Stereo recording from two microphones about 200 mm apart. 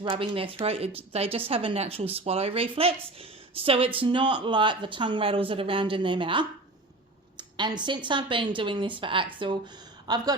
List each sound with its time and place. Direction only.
0.0 s a woman's voice: 25° right (ahead or behind)